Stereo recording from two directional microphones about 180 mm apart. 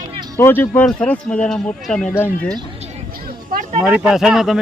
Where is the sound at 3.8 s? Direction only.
5° right (ahead or behind).